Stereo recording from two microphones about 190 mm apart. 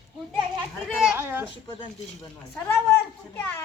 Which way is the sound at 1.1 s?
10° right (ahead or behind).